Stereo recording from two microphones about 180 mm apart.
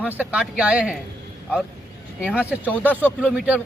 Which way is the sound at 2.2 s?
5° right (ahead or behind).